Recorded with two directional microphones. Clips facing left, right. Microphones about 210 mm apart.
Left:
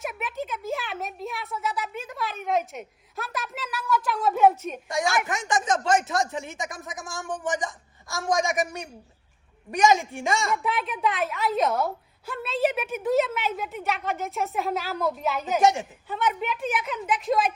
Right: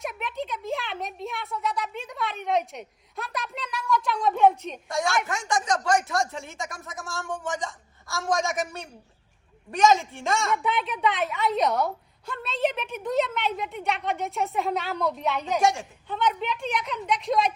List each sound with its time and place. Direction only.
0.0 s a sound: 5° left (ahead or behind)
5.2 s a man's voice: 20° left (ahead or behind)
10.4 s a woman's voice: centre (ahead or behind)
15.6 s speech: 20° left (ahead or behind)
16.0 s a woman's voice: 5° left (ahead or behind)